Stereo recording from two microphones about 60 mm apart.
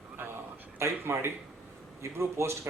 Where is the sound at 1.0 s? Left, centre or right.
Right.